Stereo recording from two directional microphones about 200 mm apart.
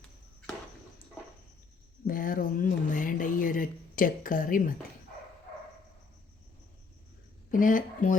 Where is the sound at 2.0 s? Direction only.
45° left (ahead or behind).